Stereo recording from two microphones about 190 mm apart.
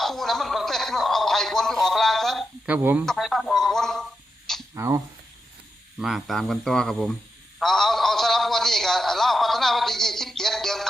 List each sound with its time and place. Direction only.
0.0 s a sound: centre (ahead or behind)
4.7 s speech: 15° right (ahead or behind)
6.0 s a man's voice: centre (ahead or behind)